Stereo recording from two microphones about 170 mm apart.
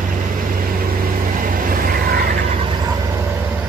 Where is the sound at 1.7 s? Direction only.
60° right (ahead or behind).